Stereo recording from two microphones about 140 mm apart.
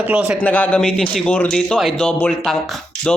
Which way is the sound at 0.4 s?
10° left (ahead or behind).